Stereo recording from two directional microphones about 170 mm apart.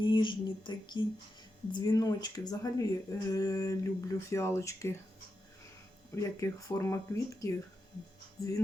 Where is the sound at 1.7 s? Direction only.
20° left (ahead or behind).